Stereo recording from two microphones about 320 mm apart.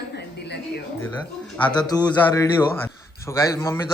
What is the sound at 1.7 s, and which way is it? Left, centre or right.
A man's voice, centre.